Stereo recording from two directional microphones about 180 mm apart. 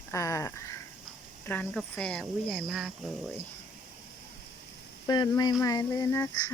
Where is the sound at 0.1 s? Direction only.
15° left (ahead or behind).